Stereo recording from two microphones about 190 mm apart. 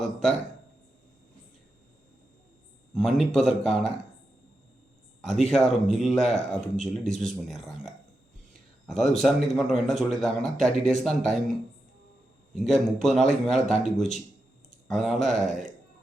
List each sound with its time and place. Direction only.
0.0 s a man's voice: 5° left (ahead or behind)
2.9 s a man's voice: centre (ahead or behind)
5.2 s a man's voice: centre (ahead or behind)
12.5 s a man's voice: centre (ahead or behind)